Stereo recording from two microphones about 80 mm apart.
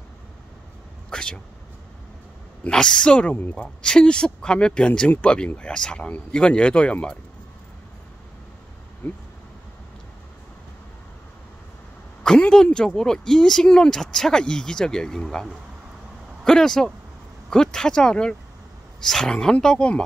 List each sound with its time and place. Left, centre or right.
1.1 s speech: centre
2.6 s speech: centre
9.0 s speech: left
12.2 s speech: centre
16.4 s speech: centre